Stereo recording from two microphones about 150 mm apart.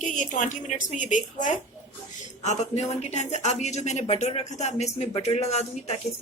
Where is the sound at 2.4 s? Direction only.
45° left (ahead or behind).